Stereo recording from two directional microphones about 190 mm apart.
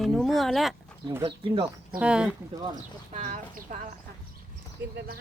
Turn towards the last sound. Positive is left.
turn(degrees=-45)  # may be behind; listen again after turning